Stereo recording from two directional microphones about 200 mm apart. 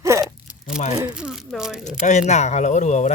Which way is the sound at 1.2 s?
5° right (ahead or behind).